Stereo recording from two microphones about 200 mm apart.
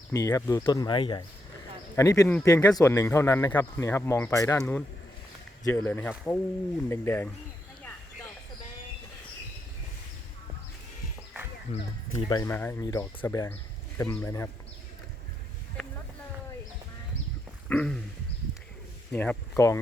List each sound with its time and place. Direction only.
0.1 s speech: 15° left (ahead or behind)
12.1 s speech: 20° left (ahead or behind)
12.5 s speech: 10° left (ahead or behind)
15.8 s a sound: centre (ahead or behind)
17.7 s wild animals: 5° left (ahead or behind)
19.1 s speech: 5° left (ahead or behind)